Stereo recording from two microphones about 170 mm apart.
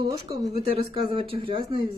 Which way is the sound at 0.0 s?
25° right (ahead or behind).